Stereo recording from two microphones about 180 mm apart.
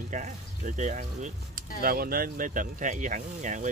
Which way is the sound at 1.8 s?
55° right (ahead or behind).